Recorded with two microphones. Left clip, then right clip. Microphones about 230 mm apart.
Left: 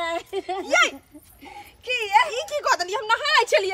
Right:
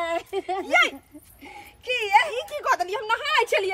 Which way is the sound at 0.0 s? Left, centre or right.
Centre.